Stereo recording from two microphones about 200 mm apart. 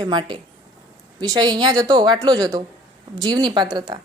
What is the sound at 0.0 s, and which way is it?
A woman's voice, 20° right (ahead or behind).